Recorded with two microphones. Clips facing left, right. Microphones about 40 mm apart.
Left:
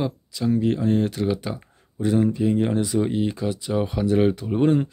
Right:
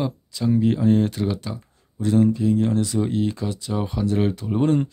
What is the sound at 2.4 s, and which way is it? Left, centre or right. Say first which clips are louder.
Speech: right 1 dB; left.